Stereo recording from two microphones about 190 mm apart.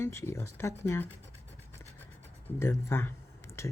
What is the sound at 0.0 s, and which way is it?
Speech, 15° left (ahead or behind).